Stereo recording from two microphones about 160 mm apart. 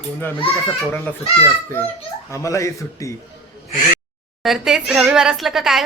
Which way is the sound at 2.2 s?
20° left (ahead or behind).